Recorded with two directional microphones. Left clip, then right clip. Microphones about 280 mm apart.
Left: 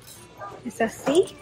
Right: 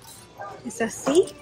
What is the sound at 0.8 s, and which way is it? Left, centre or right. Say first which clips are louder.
Speech: even; centre.